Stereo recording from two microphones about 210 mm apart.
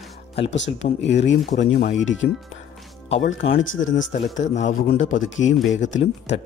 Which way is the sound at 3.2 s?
35° left (ahead or behind).